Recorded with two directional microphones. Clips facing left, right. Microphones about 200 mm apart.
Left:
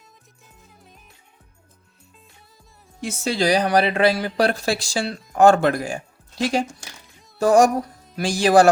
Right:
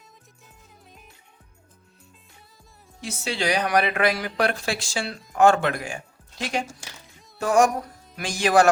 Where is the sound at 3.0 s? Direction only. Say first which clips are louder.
Left 5 dB; 45° left (ahead or behind).